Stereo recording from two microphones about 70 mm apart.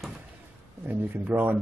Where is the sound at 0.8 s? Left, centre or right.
Right.